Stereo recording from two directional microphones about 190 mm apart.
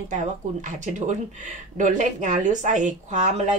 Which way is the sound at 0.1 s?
40° right (ahead or behind).